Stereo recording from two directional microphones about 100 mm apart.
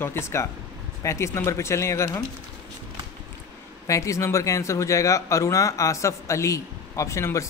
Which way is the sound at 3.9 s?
30° left (ahead or behind).